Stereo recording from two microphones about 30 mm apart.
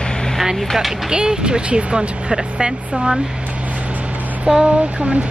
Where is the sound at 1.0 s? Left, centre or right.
Right.